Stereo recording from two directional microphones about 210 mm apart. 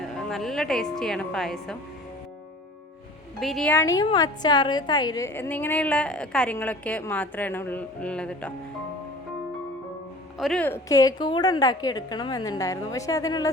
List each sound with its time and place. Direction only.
0.0 s a woman's voice: centre (ahead or behind)
3.4 s a woman's voice: centre (ahead or behind)
10.3 s a woman's voice: centre (ahead or behind); by 13.5 s 15° left (ahead or behind)